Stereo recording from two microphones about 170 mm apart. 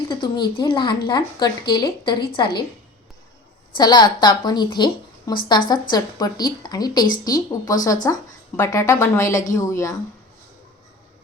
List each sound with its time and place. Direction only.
0.1 s a woman's voice: 25° left (ahead or behind)
3.8 s a woman's voice: 25° left (ahead or behind)